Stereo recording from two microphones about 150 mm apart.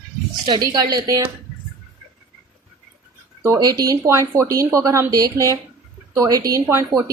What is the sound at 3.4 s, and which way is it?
Speech, 20° right (ahead or behind).